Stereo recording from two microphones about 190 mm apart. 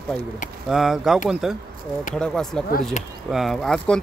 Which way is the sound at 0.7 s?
Centre (ahead or behind).